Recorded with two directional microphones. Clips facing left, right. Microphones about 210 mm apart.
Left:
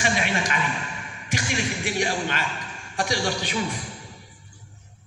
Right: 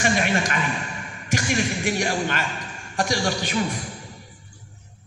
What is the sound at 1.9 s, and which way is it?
A man's voice, 45° right (ahead or behind).